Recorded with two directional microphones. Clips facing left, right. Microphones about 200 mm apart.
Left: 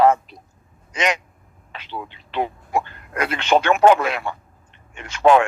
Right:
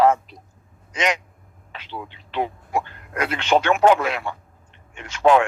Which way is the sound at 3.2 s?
55° left (ahead or behind).